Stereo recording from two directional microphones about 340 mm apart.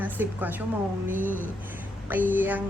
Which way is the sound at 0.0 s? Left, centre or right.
Centre.